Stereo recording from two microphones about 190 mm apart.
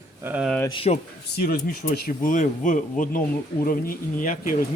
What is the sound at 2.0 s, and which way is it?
Speech, 45° left (ahead or behind).